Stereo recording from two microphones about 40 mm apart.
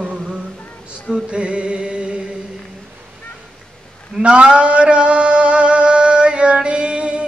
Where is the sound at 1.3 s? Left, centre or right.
Right.